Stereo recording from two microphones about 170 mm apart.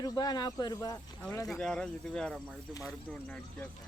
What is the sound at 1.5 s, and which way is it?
Speech, centre (ahead or behind).